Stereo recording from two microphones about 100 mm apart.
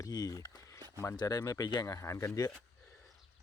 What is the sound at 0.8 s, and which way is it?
Speech, 40° right (ahead or behind).